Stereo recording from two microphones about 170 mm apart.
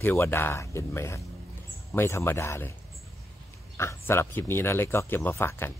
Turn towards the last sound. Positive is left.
turn(degrees=15)  # may be behind; listen again after turning